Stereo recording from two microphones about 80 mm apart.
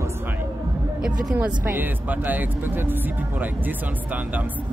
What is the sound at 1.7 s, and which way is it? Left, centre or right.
Speech, right.